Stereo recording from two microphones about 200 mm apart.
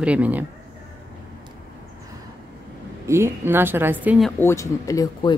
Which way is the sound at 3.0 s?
15° right (ahead or behind).